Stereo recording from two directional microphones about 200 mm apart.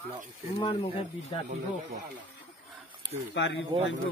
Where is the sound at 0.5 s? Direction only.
25° left (ahead or behind).